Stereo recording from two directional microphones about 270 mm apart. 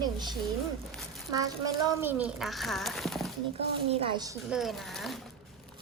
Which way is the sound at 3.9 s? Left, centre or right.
Centre.